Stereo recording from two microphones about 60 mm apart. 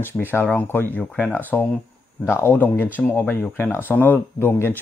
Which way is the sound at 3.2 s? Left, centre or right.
Left.